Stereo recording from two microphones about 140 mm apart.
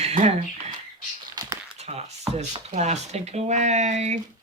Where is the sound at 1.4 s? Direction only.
30° right (ahead or behind).